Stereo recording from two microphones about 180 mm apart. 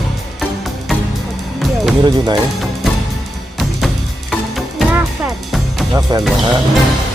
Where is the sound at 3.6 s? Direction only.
Centre (ahead or behind).